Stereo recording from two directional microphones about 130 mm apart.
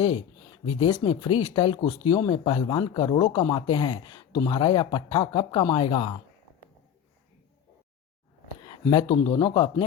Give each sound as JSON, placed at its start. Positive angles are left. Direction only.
{"t": 1.0, "sound": "speech", "side_deg": 35}
{"t": 8.6, "sound": "speech", "side_deg": 40}